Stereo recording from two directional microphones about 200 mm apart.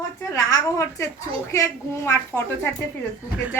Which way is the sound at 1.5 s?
15° left (ahead or behind).